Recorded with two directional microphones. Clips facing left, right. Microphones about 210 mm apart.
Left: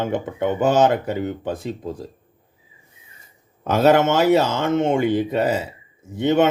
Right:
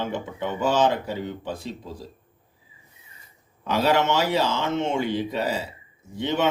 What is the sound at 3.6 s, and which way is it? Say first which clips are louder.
Speech: left 6 dB; 50° left (ahead or behind).